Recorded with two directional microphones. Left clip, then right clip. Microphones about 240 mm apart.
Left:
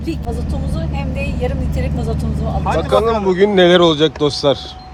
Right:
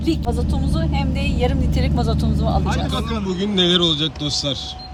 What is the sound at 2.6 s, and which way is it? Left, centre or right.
Speech, centre.